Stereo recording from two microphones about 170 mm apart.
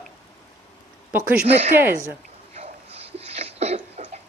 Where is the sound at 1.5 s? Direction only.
40° right (ahead or behind).